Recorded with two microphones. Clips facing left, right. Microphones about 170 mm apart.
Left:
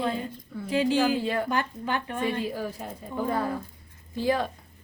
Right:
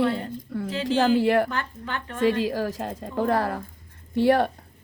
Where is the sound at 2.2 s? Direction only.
85° right; by 4.5 s 65° right (ahead or behind).